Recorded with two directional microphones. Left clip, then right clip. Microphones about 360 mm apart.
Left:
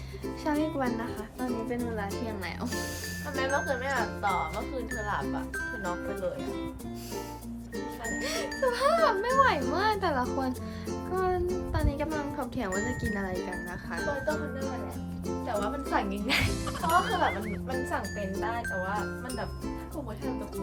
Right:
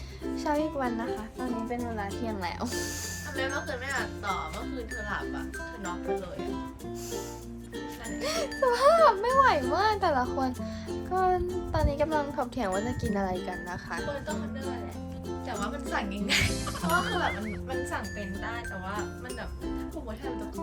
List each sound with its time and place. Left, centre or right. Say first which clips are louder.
0.4 s speech: even; centre
3.5 s speech: left 4 dB; left
8.2 s speech: right 3 dB; centre
15.4 s speech: left 3 dB; left
16.5 s speech: left 1 dB; centre
18.3 s speech: left 7 dB; left